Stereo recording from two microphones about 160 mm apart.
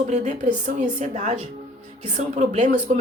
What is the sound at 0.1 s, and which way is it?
Speech, 50° right (ahead or behind).